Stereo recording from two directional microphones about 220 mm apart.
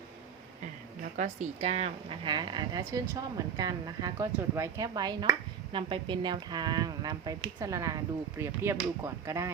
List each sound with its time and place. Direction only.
1.1 s speech: 35° right (ahead or behind); by 9.5 s 15° right (ahead or behind)